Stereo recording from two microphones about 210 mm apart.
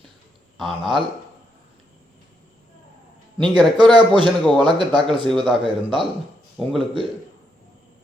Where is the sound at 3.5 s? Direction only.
20° right (ahead or behind).